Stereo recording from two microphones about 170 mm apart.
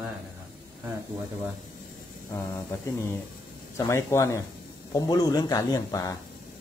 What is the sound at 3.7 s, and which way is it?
Speech, 15° left (ahead or behind).